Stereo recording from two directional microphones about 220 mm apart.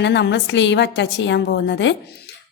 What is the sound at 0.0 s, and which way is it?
A woman's voice, 50° left (ahead or behind).